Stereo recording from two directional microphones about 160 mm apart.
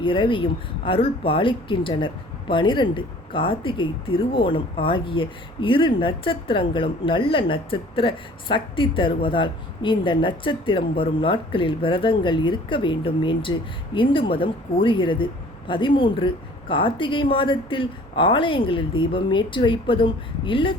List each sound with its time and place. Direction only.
0.0 s a woman's voice: 30° left (ahead or behind)